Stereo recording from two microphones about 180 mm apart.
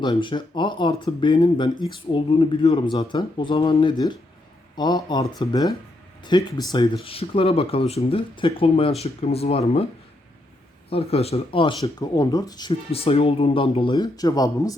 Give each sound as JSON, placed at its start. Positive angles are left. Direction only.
{"t": 0.0, "sound": "speech", "side_deg": 25}
{"t": 10.8, "sound": "speech", "side_deg": 35}